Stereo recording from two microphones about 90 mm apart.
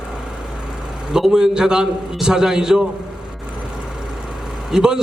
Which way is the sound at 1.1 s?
5° right (ahead or behind).